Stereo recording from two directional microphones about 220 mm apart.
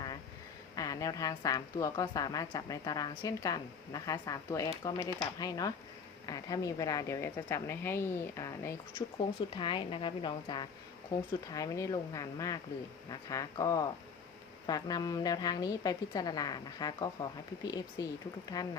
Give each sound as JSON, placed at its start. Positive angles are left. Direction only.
{"t": 0.8, "sound": "a woman's voice", "side_deg": 15}
{"t": 9.0, "sound": "a woman's voice", "side_deg": 25}